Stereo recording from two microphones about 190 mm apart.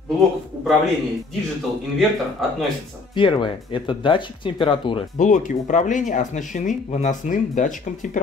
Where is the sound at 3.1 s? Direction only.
25° left (ahead or behind).